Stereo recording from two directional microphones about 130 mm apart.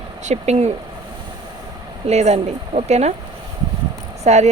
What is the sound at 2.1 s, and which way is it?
Speech, 55° right (ahead or behind).